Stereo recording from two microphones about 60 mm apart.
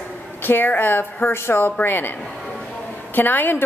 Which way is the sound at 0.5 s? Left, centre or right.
Left.